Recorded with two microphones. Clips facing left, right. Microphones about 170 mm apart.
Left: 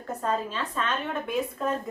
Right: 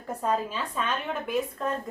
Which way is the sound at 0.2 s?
10° right (ahead or behind).